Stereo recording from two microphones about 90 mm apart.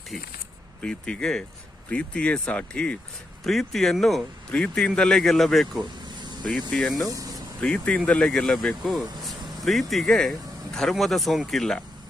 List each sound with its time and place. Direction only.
0.8 s speech: 10° left (ahead or behind)
4.5 s speech: 15° left (ahead or behind)
7.1 s vehicle: 40° right (ahead or behind)
7.6 s speech: 15° left (ahead or behind)